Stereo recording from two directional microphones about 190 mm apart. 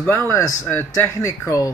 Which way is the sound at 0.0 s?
10° left (ahead or behind).